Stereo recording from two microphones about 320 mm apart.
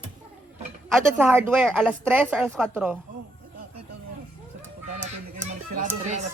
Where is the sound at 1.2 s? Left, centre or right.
Centre.